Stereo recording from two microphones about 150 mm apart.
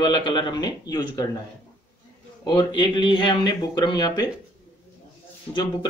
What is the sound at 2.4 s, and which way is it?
Speech, 30° left (ahead or behind).